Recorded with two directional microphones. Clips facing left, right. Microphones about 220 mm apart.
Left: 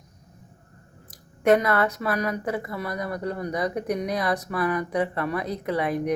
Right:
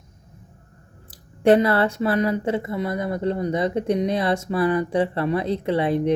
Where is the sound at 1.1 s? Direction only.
30° right (ahead or behind).